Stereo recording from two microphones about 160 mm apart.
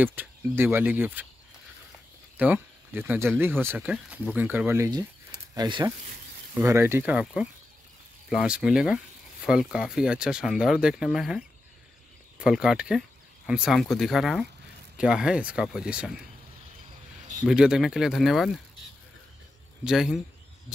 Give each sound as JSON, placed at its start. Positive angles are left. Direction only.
{"t": 0.0, "sound": "speech", "side_deg": -10}
{"t": 2.3, "sound": "speech", "side_deg": -10}
{"t": 6.5, "sound": "speech", "side_deg": -15}
{"t": 17.5, "sound": "speech", "side_deg": -5}
{"t": 19.8, "sound": "speech", "side_deg": -5}